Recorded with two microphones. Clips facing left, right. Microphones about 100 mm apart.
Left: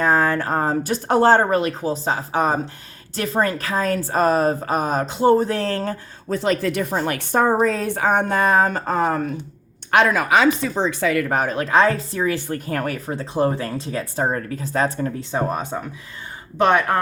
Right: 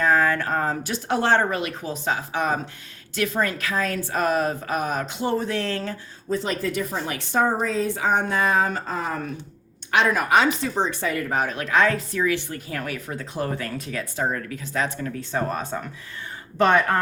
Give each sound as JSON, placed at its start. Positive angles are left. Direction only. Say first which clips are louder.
{"t": 0.0, "sound": "a woman's voice", "louder": "left 2 dB", "side_deg": 35}
{"t": 6.3, "sound": "a woman's voice", "louder": "left 4 dB", "side_deg": 70}
{"t": 10.1, "sound": "speech", "louder": "left 3 dB", "side_deg": 90}
{"t": 11.3, "sound": "a woman's voice", "louder": "left 3 dB", "side_deg": 50}
{"t": 11.5, "sound": "a woman's voice", "louder": "left 4 dB", "side_deg": 35}
{"t": 13.1, "sound": "a woman's voice", "louder": "left 9 dB", "side_deg": 30}
{"t": 15.3, "sound": "speech", "louder": "left 1 dB", "side_deg": 15}